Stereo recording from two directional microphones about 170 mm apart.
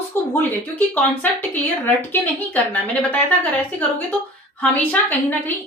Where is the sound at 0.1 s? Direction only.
10° left (ahead or behind).